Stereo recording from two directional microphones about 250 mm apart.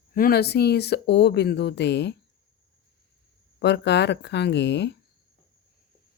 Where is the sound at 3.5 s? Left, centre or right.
Left.